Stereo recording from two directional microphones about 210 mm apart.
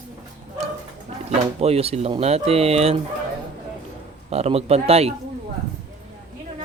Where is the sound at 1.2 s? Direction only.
30° right (ahead or behind).